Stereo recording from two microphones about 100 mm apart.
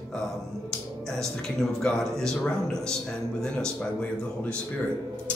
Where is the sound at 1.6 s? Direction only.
5° left (ahead or behind).